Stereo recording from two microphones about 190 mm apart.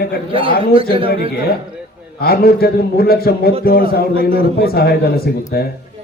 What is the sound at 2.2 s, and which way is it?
A man's voice, 55° left (ahead or behind).